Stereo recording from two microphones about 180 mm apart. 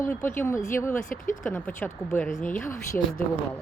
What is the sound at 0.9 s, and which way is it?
Speech, 45° left (ahead or behind).